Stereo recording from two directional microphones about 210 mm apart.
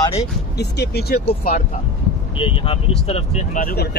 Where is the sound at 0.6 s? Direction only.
50° left (ahead or behind).